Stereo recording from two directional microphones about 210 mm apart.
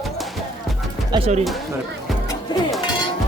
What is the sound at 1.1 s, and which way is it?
Speech, 30° right (ahead or behind).